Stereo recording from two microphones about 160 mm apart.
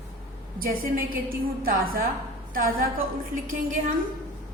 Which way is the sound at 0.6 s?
65° right (ahead or behind).